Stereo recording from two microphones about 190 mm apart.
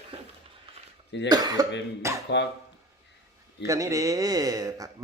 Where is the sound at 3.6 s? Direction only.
15° right (ahead or behind).